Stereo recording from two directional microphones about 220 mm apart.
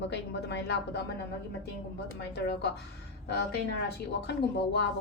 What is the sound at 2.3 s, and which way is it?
Speech, 50° left (ahead or behind).